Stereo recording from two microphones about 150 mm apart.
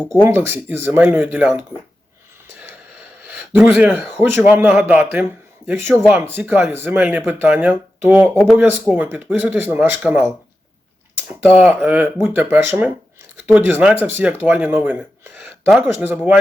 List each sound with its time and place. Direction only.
0.3 s speech: 15° right (ahead or behind)
3.5 s speech: 10° right (ahead or behind)
11.3 s speech: 10° right (ahead or behind)